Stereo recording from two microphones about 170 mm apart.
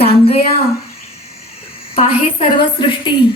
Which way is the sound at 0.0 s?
35° left (ahead or behind).